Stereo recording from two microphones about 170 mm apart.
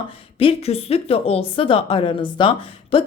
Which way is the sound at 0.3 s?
35° left (ahead or behind).